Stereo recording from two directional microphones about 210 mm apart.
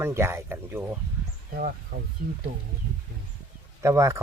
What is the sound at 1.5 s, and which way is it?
Speech, 40° right (ahead or behind).